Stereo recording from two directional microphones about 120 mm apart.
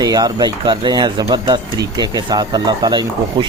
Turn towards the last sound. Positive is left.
turn(degrees=-35)  # may be behind; listen again after turning